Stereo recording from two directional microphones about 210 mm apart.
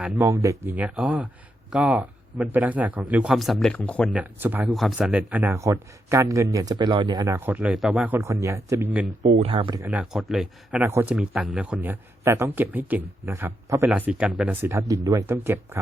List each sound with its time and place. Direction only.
0.0 s a man's voice: 15° right (ahead or behind); by 4.1 s 5° left (ahead or behind)
4.1 s speech: 10° right (ahead or behind)
9.2 s speech: 30° right (ahead or behind)
9.8 s speech: 5° right (ahead or behind)